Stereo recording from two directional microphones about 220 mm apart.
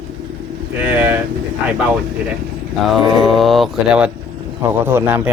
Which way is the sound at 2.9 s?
Centre (ahead or behind).